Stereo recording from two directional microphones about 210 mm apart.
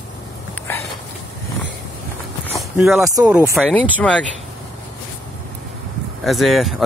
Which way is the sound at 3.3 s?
5° right (ahead or behind).